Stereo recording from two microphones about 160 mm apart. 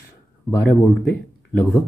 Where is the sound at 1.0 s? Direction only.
10° left (ahead or behind).